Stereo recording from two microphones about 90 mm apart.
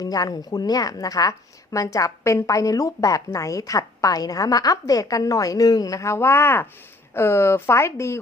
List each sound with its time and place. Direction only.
0.0 s speech: 45° left (ahead or behind)